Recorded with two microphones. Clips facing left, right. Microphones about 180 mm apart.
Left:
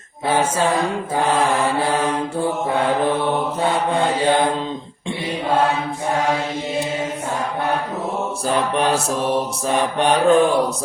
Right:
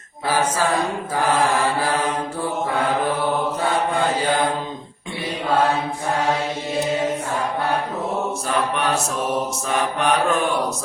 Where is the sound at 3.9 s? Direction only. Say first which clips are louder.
Left 3 dB; 25° left (ahead or behind).